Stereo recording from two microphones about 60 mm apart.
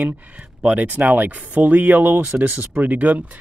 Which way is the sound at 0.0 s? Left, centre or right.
Right.